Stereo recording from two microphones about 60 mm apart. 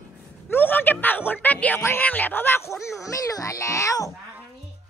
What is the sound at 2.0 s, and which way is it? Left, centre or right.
Speech, left.